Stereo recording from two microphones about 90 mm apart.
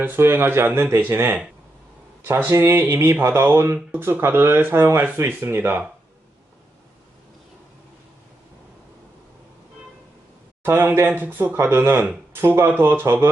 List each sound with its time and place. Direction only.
0.0 s speech: 25° right (ahead or behind)
2.5 s speech: 25° right (ahead or behind)
10.8 s speech: 25° right (ahead or behind)